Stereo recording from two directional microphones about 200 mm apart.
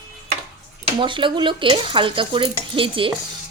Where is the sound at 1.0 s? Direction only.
25° right (ahead or behind).